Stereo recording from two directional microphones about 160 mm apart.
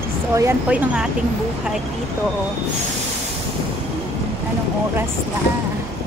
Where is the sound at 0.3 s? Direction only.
20° right (ahead or behind).